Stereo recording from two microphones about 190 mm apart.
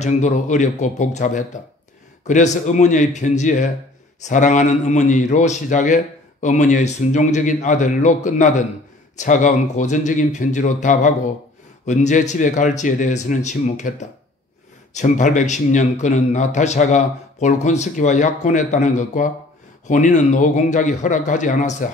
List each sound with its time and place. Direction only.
0.0 s a man's voice: 40° left (ahead or behind)